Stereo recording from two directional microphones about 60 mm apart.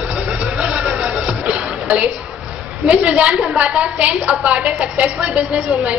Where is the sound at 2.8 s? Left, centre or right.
Centre.